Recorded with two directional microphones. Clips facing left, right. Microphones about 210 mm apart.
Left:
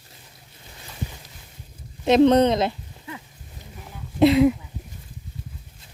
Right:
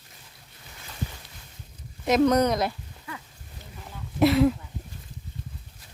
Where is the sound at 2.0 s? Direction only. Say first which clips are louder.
Left 5 dB; 25° left (ahead or behind).